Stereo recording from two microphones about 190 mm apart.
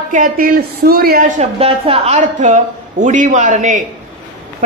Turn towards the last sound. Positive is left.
turn(degrees=-40)  # may be behind; listen again after turning